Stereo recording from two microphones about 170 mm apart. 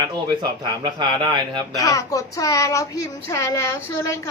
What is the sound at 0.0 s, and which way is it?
Speech, 25° right (ahead or behind).